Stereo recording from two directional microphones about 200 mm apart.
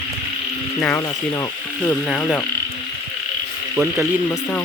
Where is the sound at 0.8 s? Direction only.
15° left (ahead or behind).